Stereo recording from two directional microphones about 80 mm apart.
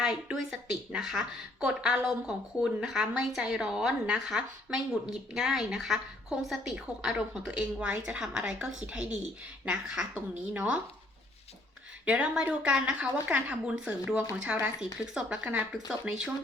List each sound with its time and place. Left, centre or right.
0.0 s a woman's voice: centre
12.0 s speech: centre